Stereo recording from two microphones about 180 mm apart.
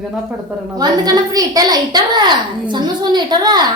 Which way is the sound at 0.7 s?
20° right (ahead or behind).